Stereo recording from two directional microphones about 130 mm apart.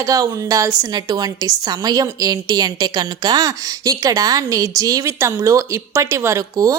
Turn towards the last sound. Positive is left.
turn(degrees=-25)  # may be behind; listen again after turning